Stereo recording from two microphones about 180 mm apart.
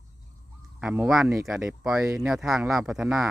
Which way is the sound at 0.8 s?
5° right (ahead or behind).